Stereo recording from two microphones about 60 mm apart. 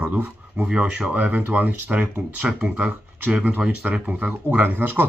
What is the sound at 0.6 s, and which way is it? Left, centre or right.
Speech, centre.